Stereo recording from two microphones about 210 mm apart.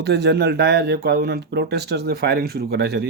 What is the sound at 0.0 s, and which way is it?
Speech, 55° right (ahead or behind).